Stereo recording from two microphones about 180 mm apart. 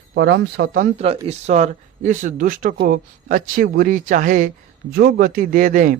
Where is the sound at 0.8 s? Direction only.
35° right (ahead or behind).